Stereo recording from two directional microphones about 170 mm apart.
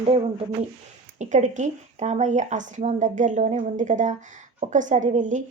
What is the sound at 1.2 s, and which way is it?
Speech, 45° right (ahead or behind).